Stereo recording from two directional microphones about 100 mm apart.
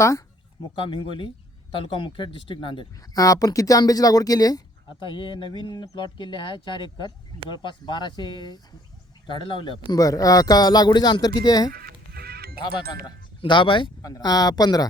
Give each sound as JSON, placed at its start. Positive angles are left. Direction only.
{"t": 0.8, "sound": "speech", "side_deg": 55}
{"t": 3.2, "sound": "speech", "side_deg": 35}
{"t": 5.0, "sound": "speech", "side_deg": 55}
{"t": 9.2, "sound": "speech", "side_deg": 60}
{"t": 10.0, "sound": "speech", "side_deg": 35}
{"t": 13.4, "sound": "speech", "side_deg": 60}
{"t": 14.0, "sound": "speech", "side_deg": 40}